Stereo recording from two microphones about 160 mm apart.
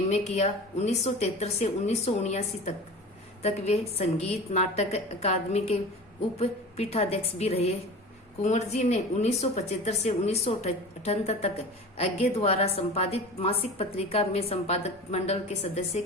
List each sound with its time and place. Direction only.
0.1 s a woman's voice: 45° left (ahead or behind)